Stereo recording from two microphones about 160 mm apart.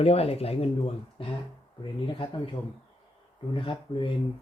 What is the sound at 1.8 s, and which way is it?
Speech, 30° left (ahead or behind).